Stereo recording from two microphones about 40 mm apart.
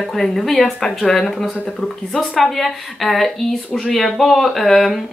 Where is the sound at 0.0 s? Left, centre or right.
Centre.